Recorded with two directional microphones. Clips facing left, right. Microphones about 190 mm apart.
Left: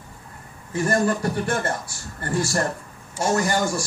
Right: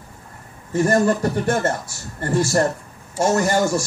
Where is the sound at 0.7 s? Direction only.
40° right (ahead or behind).